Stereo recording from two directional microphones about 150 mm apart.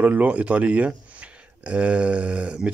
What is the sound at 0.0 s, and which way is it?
Speech, 10° right (ahead or behind).